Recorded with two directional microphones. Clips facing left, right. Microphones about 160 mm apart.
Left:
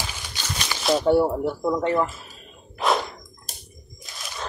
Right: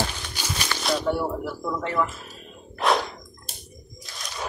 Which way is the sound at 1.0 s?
30° left (ahead or behind).